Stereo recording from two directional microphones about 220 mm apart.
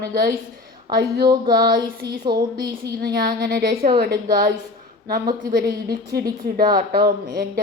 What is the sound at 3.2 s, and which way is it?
A woman's voice, 45° right (ahead or behind).